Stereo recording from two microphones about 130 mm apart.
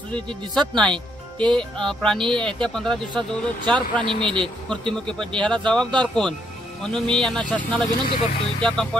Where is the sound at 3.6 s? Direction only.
35° right (ahead or behind).